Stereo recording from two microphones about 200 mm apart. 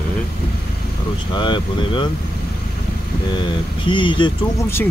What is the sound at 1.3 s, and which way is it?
Speech, 25° left (ahead or behind).